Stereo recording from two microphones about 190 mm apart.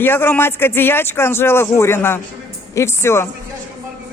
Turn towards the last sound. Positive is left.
turn(degrees=15)  # may be behind; listen again after turning